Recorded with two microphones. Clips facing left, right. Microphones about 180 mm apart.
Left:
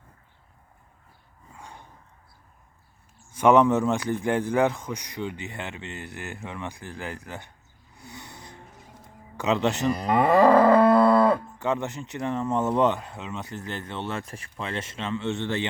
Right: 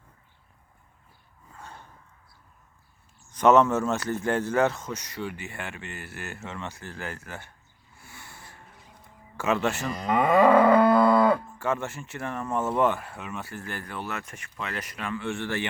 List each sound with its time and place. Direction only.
1.5 s dog: 15° left (ahead or behind)
3.3 s a man's voice: 10° left (ahead or behind)
7.9 s vehicle: 20° left (ahead or behind)
9.4 s a man's voice: 20° left (ahead or behind)
9.9 s a man's voice: 5° left (ahead or behind)
10.2 s speech: 30° left (ahead or behind)